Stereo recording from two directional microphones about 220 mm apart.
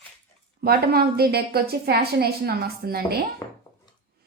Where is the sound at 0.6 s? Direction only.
45° right (ahead or behind).